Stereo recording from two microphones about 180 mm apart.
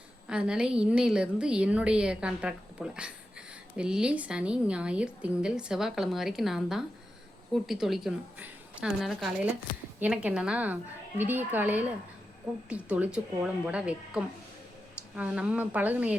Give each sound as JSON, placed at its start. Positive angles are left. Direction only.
{"t": 0.3, "sound": "a woman's voice", "side_deg": -5}